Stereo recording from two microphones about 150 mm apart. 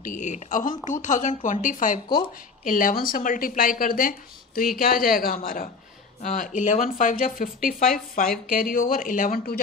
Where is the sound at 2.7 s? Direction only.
65° left (ahead or behind).